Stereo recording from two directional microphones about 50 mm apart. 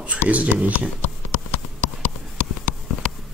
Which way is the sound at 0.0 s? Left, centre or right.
Right.